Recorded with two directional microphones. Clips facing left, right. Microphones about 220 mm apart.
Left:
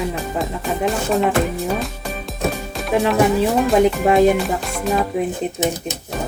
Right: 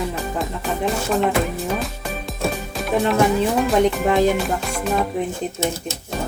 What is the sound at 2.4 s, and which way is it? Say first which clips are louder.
Music: left 1 dB; centre (ahead or behind).